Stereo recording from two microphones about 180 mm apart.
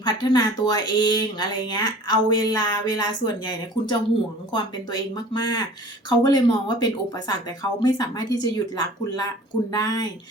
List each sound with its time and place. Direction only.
0.0 s speech: 20° left (ahead or behind)